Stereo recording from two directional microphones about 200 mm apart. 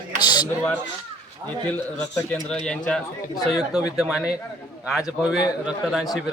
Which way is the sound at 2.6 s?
5° left (ahead or behind).